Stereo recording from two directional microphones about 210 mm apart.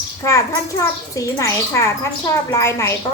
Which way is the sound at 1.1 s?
15° left (ahead or behind).